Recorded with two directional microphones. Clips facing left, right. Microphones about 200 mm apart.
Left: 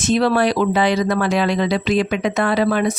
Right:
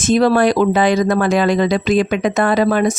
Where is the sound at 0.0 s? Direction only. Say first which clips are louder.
Right 3 dB; 45° right (ahead or behind).